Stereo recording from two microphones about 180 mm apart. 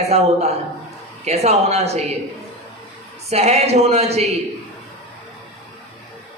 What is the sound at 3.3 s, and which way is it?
Speech, 35° right (ahead or behind).